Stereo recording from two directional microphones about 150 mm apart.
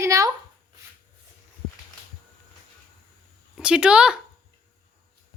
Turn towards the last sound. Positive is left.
turn(degrees=-5)  # may be behind; listen again after turning